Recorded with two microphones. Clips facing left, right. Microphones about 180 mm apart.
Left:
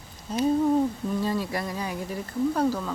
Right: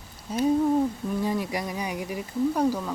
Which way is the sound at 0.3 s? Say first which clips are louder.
Even; 10° right (ahead or behind).